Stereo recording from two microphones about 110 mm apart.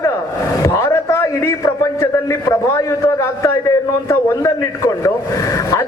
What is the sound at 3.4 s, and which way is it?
A man's voice, 30° left (ahead or behind).